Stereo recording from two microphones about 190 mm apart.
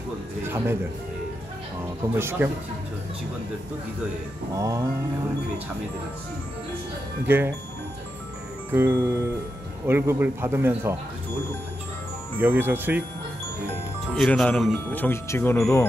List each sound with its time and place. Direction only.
0.4 s speech: 10° right (ahead or behind)
2.1 s a man's voice: 10° right (ahead or behind)
4.6 s a man's voice: 15° right (ahead or behind)
7.2 s a man's voice: 10° right (ahead or behind)
8.7 s a man's voice: 10° right (ahead or behind)
12.4 s a man's voice: 10° right (ahead or behind)
14.1 s speech: 5° left (ahead or behind)